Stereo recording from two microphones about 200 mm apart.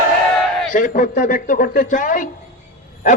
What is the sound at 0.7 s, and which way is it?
Speech, 40° left (ahead or behind).